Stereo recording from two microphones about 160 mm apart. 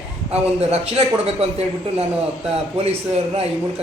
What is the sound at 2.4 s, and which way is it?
Speech, 40° right (ahead or behind).